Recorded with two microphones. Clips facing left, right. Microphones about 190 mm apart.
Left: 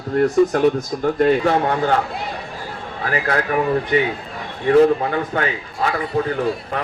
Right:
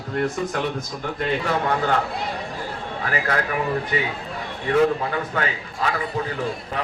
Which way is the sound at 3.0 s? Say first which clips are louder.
Left 4 dB; 40° left (ahead or behind).